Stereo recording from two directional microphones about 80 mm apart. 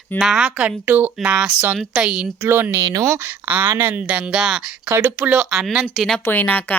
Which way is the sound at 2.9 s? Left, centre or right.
Right.